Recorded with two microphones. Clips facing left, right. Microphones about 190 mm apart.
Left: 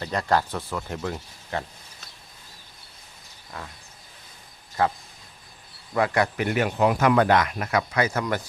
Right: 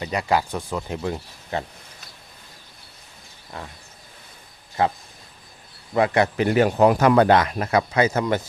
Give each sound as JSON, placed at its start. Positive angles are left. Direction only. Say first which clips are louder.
{"t": 0.0, "sound": "speech", "louder": "right 1 dB", "side_deg": -10}
{"t": 3.6, "sound": "speech", "louder": "right 2 dB", "side_deg": -25}
{"t": 4.8, "sound": "speech", "louder": "right 2 dB", "side_deg": -20}
{"t": 6.7, "sound": "speech", "louder": "right 2 dB", "side_deg": -40}